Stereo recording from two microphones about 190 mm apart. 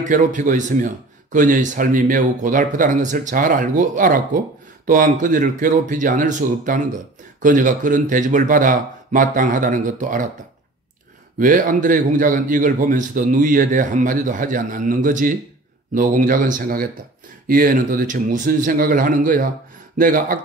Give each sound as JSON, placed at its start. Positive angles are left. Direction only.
{"t": 0.0, "sound": "speech", "side_deg": -40}
{"t": 11.3, "sound": "speech", "side_deg": -45}